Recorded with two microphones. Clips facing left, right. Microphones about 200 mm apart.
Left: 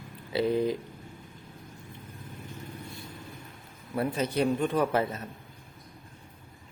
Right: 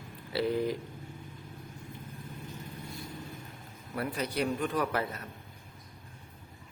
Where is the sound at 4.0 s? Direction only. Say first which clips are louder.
Left 5 dB; 25° left (ahead or behind).